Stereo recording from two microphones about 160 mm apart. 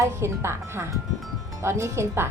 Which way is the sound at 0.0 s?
15° right (ahead or behind).